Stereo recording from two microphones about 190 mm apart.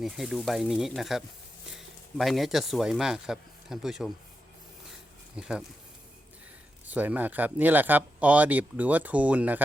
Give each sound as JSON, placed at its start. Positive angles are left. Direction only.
{"t": 0.0, "sound": "speech", "side_deg": 0}
{"t": 5.4, "sound": "speech", "side_deg": -5}
{"t": 6.8, "sound": "speech", "side_deg": -10}